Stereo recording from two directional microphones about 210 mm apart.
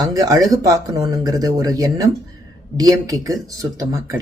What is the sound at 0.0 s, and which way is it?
Speech, 15° right (ahead or behind).